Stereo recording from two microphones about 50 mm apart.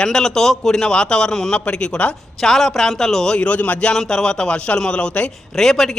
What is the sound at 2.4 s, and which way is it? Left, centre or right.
Speech, centre.